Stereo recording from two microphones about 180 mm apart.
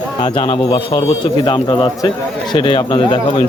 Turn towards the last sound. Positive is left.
turn(degrees=25)  # may be behind; listen again after turning